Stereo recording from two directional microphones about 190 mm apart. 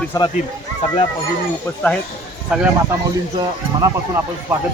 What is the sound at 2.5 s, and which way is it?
Speech, 5° right (ahead or behind).